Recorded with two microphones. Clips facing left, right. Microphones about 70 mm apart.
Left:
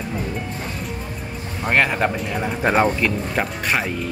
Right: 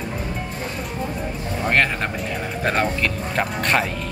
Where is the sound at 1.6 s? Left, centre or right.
Centre.